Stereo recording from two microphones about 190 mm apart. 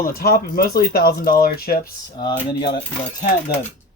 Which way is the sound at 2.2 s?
25° left (ahead or behind).